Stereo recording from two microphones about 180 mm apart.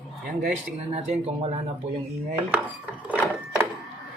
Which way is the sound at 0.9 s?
35° right (ahead or behind).